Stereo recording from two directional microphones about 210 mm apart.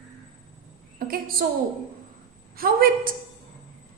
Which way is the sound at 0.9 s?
45° right (ahead or behind).